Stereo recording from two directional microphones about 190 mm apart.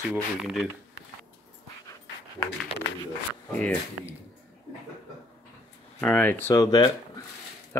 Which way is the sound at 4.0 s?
90° left.